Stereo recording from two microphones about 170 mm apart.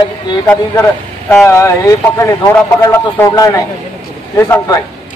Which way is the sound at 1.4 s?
15° left (ahead or behind).